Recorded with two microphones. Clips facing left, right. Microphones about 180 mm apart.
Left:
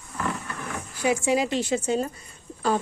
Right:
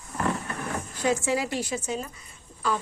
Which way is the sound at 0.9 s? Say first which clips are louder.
Left 3 dB; 10° left (ahead or behind).